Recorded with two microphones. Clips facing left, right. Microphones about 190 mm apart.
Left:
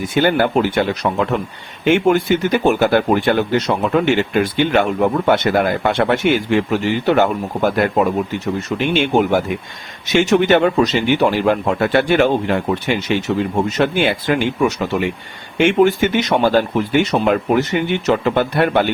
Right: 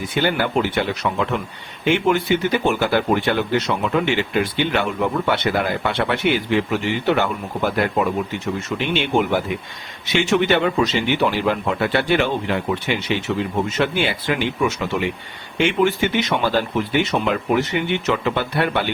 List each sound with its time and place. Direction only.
0.2 s speech: 50° left (ahead or behind)
10.1 s speech: 40° left (ahead or behind)